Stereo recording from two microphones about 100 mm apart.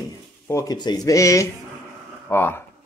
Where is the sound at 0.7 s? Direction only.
45° left (ahead or behind).